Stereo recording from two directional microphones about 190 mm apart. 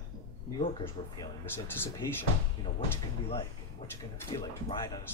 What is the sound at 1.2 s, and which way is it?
Speech, 10° left (ahead or behind).